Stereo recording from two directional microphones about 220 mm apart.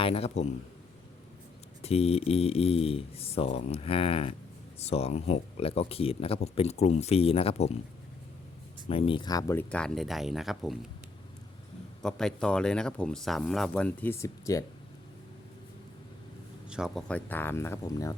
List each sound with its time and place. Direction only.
0.0 s speech: 25° left (ahead or behind)
1.8 s speech: 25° left (ahead or behind)
8.9 s speech: 25° left (ahead or behind); by 10.8 s centre (ahead or behind)
12.0 s speech: 5° left (ahead or behind)
16.6 s speech: 5° right (ahead or behind); by 18.1 s 15° left (ahead or behind)